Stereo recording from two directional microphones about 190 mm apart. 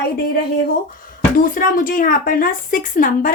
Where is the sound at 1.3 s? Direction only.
45° left (ahead or behind).